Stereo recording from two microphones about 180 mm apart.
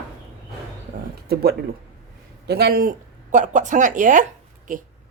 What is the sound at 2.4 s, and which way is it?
A woman's voice, 65° right (ahead or behind).